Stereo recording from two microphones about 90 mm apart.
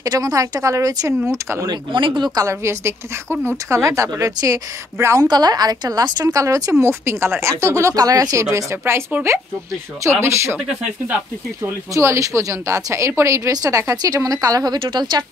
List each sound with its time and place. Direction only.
0.0 s a woman's voice: 40° right (ahead or behind)
1.7 s speech: 65° right (ahead or behind)
2.4 s a woman's voice: 30° right (ahead or behind)
5.0 s a woman's voice: 30° right (ahead or behind)
5.3 s a woman's voice: 45° right (ahead or behind); by 10.6 s 30° right (ahead or behind)
10.8 s speech: 15° right (ahead or behind)
11.6 s a woman's voice: 30° right (ahead or behind); by 15.2 s 55° right (ahead or behind)